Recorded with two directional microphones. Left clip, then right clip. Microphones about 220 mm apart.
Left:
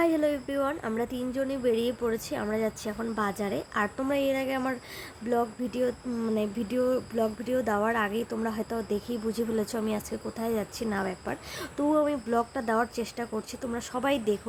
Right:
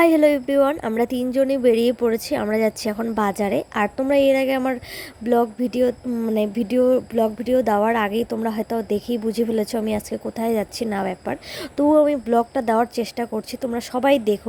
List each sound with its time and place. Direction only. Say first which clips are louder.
0.0 s speech: right 10 dB; 30° right (ahead or behind)